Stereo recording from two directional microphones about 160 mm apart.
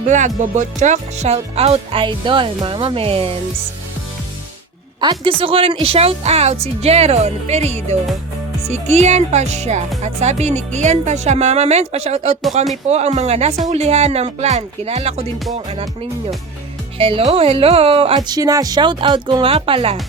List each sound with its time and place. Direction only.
0.1 s speech: 50° right (ahead or behind); by 3.3 s 35° right (ahead or behind)
4.9 s speech: 30° right (ahead or behind)
17.0 s speech: 35° right (ahead or behind)